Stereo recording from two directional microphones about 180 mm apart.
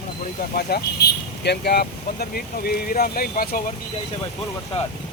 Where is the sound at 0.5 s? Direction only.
60° left (ahead or behind).